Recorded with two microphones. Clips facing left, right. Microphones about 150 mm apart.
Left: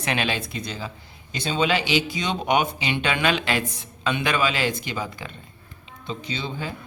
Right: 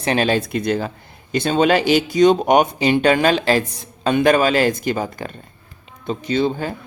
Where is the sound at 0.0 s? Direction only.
35° right (ahead or behind).